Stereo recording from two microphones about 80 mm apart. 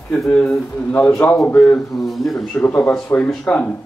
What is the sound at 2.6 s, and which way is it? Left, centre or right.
A man's voice, left.